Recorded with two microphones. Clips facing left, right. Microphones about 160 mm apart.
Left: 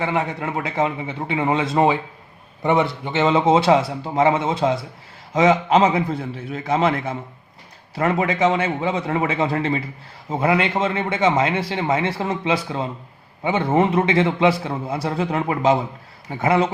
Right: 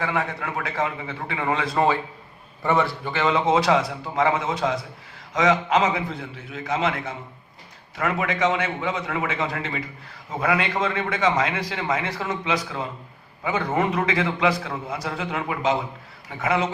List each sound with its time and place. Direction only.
0.0 s a man's voice: 20° left (ahead or behind)
6.5 s a man's voice: 40° left (ahead or behind)
7.9 s a man's voice: 30° left (ahead or behind)